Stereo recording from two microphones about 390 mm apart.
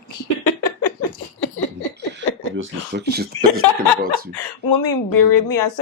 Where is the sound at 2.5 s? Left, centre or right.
Right.